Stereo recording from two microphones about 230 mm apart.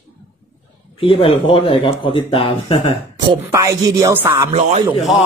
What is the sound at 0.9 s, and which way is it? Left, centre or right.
Speech, left.